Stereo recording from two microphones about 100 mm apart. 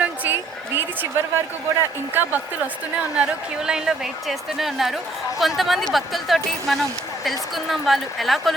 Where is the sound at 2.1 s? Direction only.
20° right (ahead or behind).